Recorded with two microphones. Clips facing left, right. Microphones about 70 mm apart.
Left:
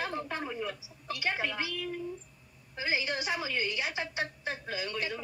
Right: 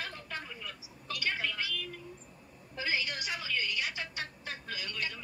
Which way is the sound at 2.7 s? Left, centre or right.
Left.